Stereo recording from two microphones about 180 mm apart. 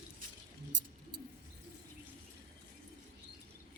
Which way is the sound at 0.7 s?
90° right.